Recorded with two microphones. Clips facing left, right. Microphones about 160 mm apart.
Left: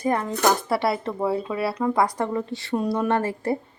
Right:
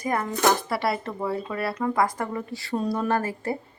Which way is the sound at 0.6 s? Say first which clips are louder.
Left 3 dB; centre (ahead or behind).